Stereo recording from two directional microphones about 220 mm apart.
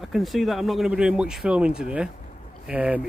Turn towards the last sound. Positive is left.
turn(degrees=-5)  # may be behind; listen again after turning